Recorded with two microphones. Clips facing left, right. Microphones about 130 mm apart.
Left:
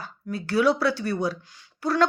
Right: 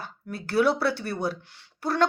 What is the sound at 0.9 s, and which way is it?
Speech, 55° right (ahead or behind).